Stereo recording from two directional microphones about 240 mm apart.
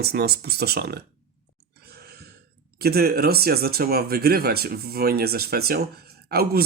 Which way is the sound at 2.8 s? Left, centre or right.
Right.